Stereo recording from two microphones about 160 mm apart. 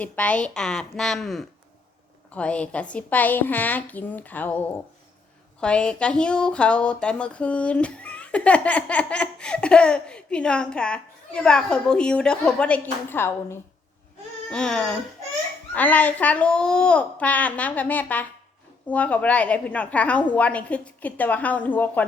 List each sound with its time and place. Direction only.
0.0 s a woman's voice: 10° left (ahead or behind)
14.5 s a woman's voice: 5° left (ahead or behind)